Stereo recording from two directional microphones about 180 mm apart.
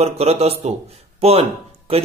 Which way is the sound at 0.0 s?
35° right (ahead or behind).